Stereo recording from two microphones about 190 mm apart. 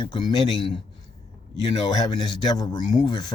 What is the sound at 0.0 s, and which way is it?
Speech, 25° left (ahead or behind).